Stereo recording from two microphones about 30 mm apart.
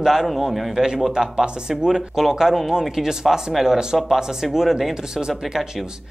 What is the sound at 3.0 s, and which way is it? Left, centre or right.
Speech, centre.